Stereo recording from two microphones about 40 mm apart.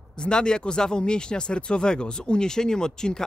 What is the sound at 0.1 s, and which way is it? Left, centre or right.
Speech, left.